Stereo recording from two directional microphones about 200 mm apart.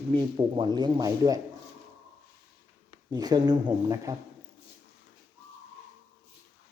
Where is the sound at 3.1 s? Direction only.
20° right (ahead or behind).